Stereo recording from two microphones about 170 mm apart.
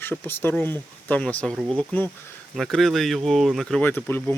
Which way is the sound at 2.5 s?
Centre (ahead or behind).